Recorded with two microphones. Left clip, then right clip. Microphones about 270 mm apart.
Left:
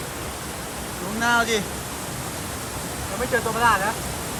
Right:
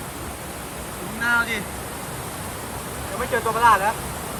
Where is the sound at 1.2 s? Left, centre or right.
Centre.